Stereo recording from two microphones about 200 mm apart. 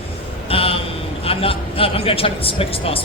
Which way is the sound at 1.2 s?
30° left (ahead or behind).